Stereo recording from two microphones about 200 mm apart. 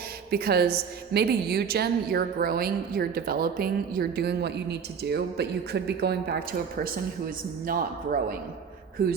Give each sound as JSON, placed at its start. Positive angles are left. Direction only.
{"t": 0.3, "sound": "a woman's voice", "side_deg": -50}